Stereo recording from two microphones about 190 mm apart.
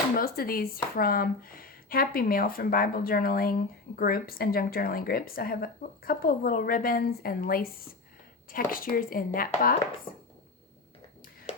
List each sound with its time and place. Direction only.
0.2 s speech: 50° left (ahead or behind)